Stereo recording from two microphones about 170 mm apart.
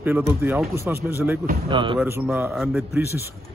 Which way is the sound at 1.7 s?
30° right (ahead or behind).